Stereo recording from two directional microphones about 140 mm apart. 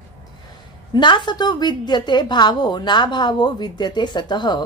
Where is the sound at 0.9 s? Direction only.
35° left (ahead or behind).